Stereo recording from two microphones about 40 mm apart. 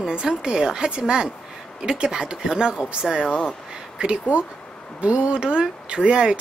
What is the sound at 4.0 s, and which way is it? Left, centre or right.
Speech, right.